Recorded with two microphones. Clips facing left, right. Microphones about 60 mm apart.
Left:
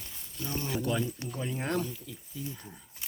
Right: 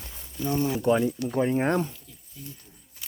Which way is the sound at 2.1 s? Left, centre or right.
Left.